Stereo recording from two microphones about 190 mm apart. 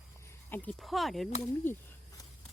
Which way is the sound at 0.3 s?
10° left (ahead or behind).